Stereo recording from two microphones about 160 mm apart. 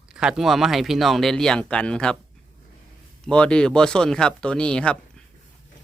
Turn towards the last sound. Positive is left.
turn(degrees=5)  # may be behind; listen again after turning